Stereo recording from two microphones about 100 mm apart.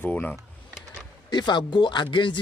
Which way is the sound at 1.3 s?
45° left (ahead or behind).